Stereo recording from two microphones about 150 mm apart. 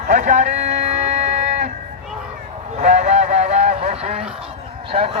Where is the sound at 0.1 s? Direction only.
55° right (ahead or behind).